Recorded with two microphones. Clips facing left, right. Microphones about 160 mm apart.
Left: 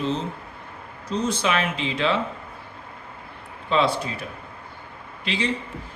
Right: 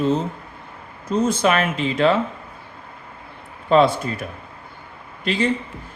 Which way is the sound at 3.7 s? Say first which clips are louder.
Right 6 dB; 50° right (ahead or behind).